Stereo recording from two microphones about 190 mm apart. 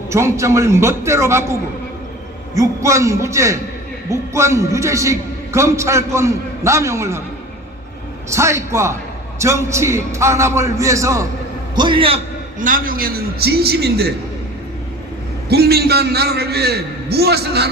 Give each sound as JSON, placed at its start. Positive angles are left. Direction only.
{"t": 0.1, "sound": "a man's voice", "side_deg": -15}
{"t": 2.6, "sound": "a man's voice", "side_deg": -15}
{"t": 8.3, "sound": "a man's voice", "side_deg": -15}
{"t": 12.5, "sound": "a man's voice", "side_deg": -45}
{"t": 15.4, "sound": "a man's voice", "side_deg": -55}